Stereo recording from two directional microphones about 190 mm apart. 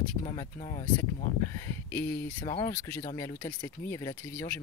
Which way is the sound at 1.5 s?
15° left (ahead or behind).